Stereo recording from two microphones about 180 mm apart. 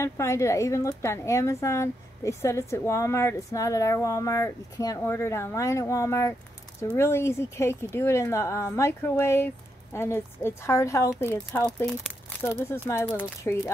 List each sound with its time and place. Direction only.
0.0 s a woman's voice: 15° left (ahead or behind)